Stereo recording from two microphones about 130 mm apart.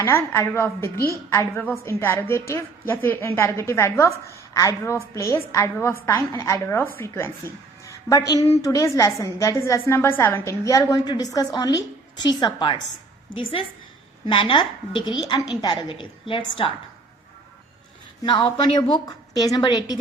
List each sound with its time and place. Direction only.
0.0 s a woman's voice: 20° left (ahead or behind); by 16.7 s 40° left (ahead or behind)
18.2 s a woman's voice: 35° left (ahead or behind)